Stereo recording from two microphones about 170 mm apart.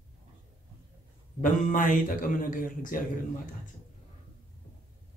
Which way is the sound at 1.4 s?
50° left (ahead or behind).